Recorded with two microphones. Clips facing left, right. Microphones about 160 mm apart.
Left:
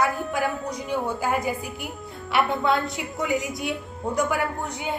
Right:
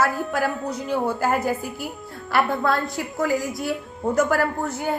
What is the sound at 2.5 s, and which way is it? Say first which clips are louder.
Speech: right 1 dB; 20° left (ahead or behind).